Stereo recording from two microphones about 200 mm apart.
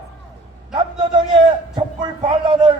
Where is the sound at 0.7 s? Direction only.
25° right (ahead or behind).